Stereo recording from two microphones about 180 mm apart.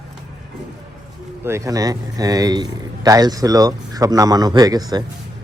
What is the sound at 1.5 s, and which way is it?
Speech, 15° right (ahead or behind).